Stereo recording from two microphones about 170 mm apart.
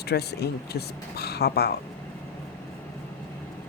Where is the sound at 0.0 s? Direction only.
70° left (ahead or behind).